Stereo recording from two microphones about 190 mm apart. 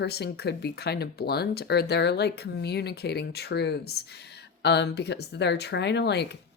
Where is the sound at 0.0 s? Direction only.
60° left (ahead or behind).